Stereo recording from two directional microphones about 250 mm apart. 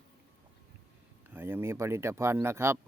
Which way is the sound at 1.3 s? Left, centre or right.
Centre.